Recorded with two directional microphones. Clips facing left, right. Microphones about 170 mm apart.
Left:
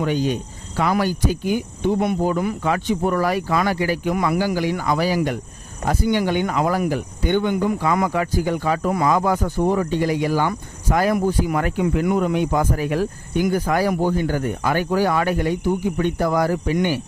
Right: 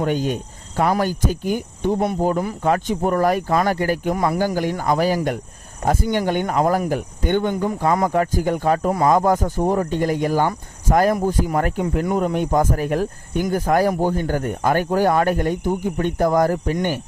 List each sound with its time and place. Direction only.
0.0 s speech: 50° right (ahead or behind)
4.1 s speech: 35° right (ahead or behind)
4.4 s speech: 45° right (ahead or behind)